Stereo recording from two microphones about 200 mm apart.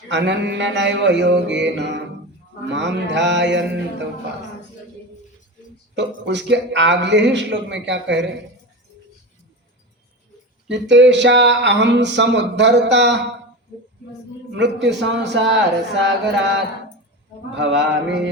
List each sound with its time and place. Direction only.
0.1 s speech: 60° right (ahead or behind)
6.0 s speech: 60° right (ahead or behind)
10.7 s speech: 60° right (ahead or behind)
14.5 s speech: 60° right (ahead or behind)
17.6 s speech: 65° right (ahead or behind)